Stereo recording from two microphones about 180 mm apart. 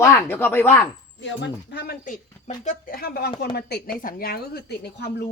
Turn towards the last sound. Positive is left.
turn(degrees=65)  # may be behind; listen again after turning